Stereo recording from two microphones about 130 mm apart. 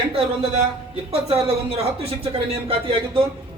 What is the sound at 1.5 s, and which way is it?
Speech, 50° right (ahead or behind).